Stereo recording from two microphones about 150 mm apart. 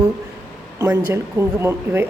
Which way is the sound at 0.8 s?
15° right (ahead or behind).